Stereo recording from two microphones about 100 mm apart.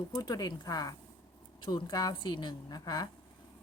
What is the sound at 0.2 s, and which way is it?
Speech, 40° left (ahead or behind).